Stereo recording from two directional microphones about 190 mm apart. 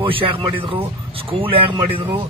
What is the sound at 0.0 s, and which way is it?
A man's voice, 25° right (ahead or behind).